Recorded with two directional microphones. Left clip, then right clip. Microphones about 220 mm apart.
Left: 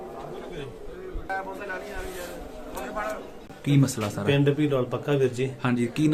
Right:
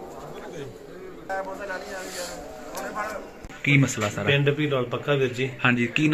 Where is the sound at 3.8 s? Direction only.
5° right (ahead or behind).